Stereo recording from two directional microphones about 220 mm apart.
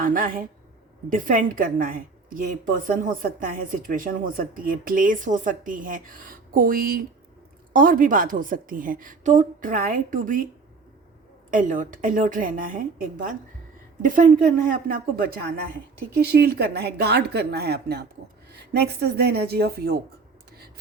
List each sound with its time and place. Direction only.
0.0 s a woman's voice: 40° right (ahead or behind)
11.5 s a woman's voice: 35° right (ahead or behind)